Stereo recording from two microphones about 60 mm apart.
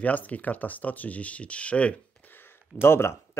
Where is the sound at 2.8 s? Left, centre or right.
Left.